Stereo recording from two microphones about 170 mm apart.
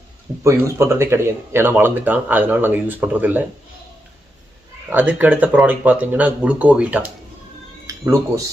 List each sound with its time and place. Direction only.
0.4 s speech: 15° right (ahead or behind)
4.9 s speech: 10° right (ahead or behind)
7.9 s a sound: 20° right (ahead or behind)